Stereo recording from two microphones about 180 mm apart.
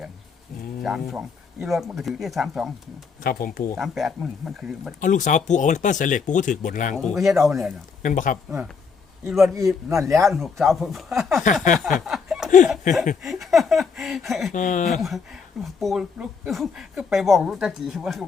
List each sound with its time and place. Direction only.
0.8 s speech: centre (ahead or behind)
3.2 s speech: 55° left (ahead or behind)
3.8 s speech: centre (ahead or behind)
4.9 s speech: 45° left (ahead or behind)
6.9 s speech: centre (ahead or behind)
8.0 s speech: 45° left (ahead or behind)
8.4 s speech: centre (ahead or behind)
9.6 s a man's voice: 15° right (ahead or behind)
10.1 s speech: centre (ahead or behind)
11.8 s a sound: centre (ahead or behind)
13.2 s speech: centre (ahead or behind)
14.5 s speech: 45° left (ahead or behind)
15.0 s speech: centre (ahead or behind)